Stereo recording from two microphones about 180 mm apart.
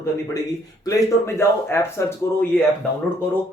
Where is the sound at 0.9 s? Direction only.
15° left (ahead or behind).